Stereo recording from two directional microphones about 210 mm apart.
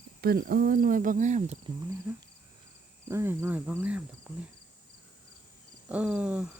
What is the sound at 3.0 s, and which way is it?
Speech, 10° right (ahead or behind).